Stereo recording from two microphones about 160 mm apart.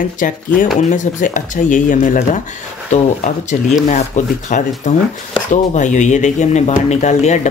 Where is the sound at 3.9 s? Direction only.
50° left (ahead or behind).